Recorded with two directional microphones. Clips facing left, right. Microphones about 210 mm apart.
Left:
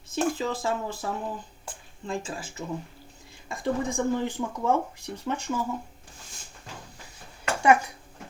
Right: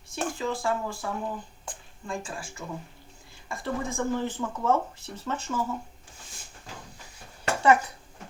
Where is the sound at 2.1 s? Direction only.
20° left (ahead or behind).